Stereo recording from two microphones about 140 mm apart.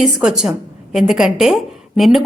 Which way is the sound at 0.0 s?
5° right (ahead or behind).